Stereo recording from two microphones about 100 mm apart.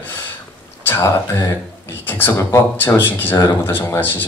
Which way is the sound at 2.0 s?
20° left (ahead or behind).